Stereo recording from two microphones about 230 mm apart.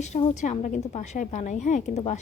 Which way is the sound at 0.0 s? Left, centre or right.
Left.